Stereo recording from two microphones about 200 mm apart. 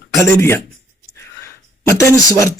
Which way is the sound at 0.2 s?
15° left (ahead or behind).